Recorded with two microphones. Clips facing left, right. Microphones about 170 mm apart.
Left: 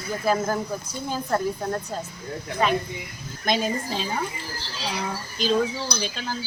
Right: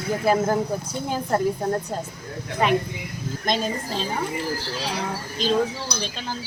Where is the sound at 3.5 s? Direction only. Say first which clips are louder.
Left 1 dB; 5° left (ahead or behind).